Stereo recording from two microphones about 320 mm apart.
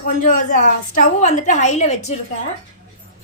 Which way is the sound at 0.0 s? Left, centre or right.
Left.